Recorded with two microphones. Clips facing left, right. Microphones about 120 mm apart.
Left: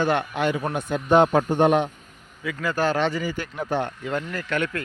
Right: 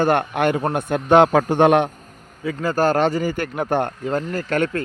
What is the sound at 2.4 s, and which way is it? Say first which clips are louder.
Speech: right 5 dB; 35° right (ahead or behind).